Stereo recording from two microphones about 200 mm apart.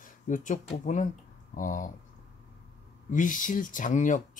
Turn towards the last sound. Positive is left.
turn(degrees=40)  # may be behind; listen again after turning